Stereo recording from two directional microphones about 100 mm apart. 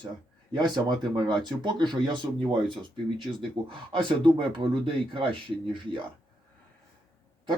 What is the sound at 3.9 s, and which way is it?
Speech, 55° right (ahead or behind).